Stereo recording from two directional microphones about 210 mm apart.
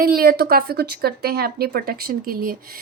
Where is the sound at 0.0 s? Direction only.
45° right (ahead or behind).